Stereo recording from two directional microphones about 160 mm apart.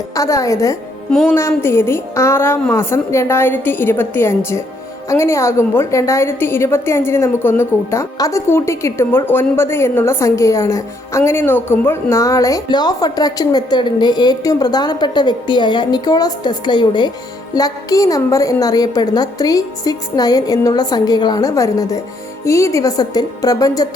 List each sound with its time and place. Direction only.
0.2 s a woman's voice: 20° left (ahead or behind)
1.1 s music: 5° left (ahead or behind)
1.4 s a woman's voice: 15° left (ahead or behind)